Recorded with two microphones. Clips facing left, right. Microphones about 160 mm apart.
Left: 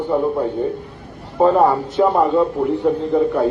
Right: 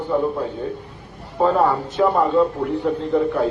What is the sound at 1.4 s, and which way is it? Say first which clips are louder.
A man's voice: left 4 dB; 15° left (ahead or behind).